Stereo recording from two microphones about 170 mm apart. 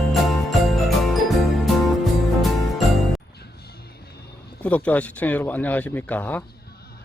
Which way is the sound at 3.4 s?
70° left (ahead or behind).